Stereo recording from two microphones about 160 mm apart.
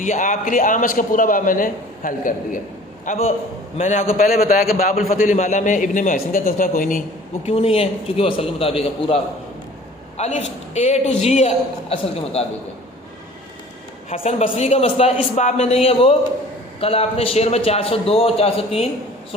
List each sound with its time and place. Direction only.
0.0 s a man's voice: 50° left (ahead or behind)
3.0 s a man's voice: 45° left (ahead or behind)
4.3 s a man's voice: 65° left (ahead or behind)
7.4 s a man's voice: 40° left (ahead or behind)
14.1 s speech: 40° left (ahead or behind)